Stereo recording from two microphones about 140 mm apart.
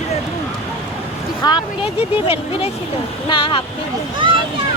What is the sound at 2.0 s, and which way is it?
Speech, 45° left (ahead or behind).